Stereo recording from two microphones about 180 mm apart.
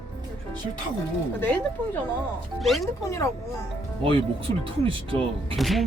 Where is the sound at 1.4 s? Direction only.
10° left (ahead or behind).